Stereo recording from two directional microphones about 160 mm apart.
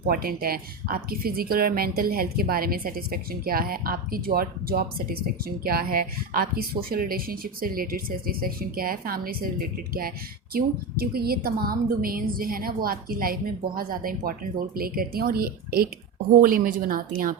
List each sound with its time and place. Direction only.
0.1 s speech: 65° right (ahead or behind)
10.5 s speech: 70° right (ahead or behind)